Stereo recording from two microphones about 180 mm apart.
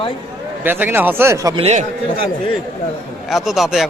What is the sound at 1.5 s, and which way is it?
Speech, 35° right (ahead or behind).